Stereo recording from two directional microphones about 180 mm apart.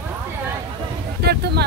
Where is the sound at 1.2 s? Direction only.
65° right (ahead or behind).